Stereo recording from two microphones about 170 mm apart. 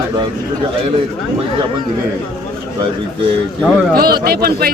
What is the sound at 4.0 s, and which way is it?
Speech, 65° right (ahead or behind).